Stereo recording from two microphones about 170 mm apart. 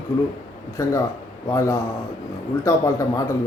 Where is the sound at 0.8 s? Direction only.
15° left (ahead or behind).